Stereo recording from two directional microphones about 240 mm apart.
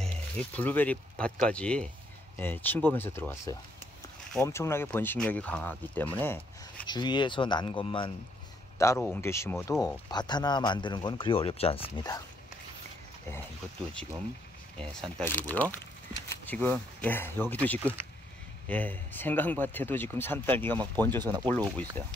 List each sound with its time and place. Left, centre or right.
0.0 s speech: centre
6.9 s speech: centre
14.8 s speech: centre